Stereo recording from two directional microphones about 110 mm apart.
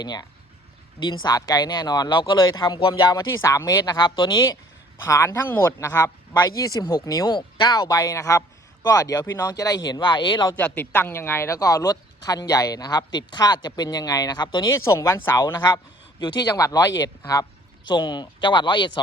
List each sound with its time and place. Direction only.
0.0 s speech: 40° left (ahead or behind)
5.0 s a man's voice: 25° left (ahead or behind)
6.6 s speech: 35° left (ahead or behind)
7.9 s a man's voice: 30° left (ahead or behind)
9.5 s speech: 35° left (ahead or behind)
10.6 s speech: 15° left (ahead or behind); by 14.7 s 40° left (ahead or behind)
14.7 s a man's voice: 25° left (ahead or behind)
16.2 s speech: 45° left (ahead or behind)
16.6 s speech: 35° left (ahead or behind)